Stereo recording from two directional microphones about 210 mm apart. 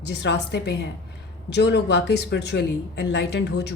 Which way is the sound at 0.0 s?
55° left (ahead or behind).